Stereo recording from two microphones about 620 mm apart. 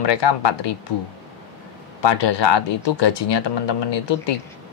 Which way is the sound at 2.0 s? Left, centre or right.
Left.